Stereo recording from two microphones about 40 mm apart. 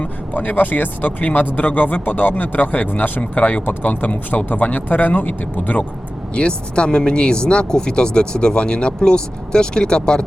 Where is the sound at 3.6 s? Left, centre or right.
Left.